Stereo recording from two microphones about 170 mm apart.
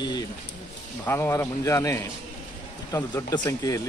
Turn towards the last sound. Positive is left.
turn(degrees=20)  # may be behind; listen again after turning